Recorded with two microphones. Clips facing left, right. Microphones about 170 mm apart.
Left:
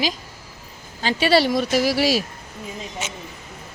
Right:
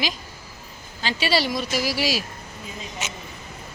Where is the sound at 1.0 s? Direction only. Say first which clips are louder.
Left 6 dB; 55° left (ahead or behind).